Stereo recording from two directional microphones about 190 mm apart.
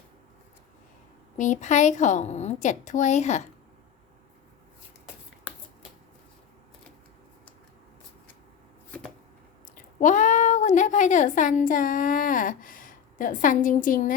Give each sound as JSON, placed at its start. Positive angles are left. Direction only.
{"t": 1.4, "sound": "a woman's voice", "side_deg": 40}
{"t": 8.9, "sound": "chopping", "side_deg": 5}
{"t": 9.7, "sound": "speech", "side_deg": 40}